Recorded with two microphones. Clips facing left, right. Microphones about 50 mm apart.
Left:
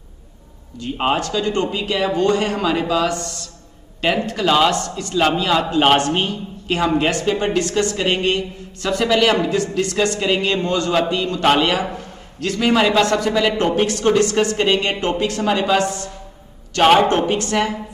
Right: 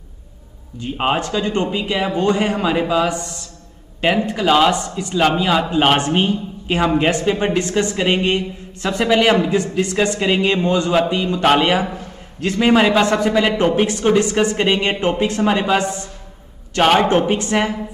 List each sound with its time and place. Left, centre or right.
0.9 s speech: centre
1.2 s a woman's voice: right
16.8 s speech: centre
17.3 s speech: centre